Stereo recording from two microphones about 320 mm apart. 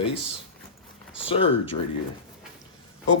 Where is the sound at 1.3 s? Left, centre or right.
Centre.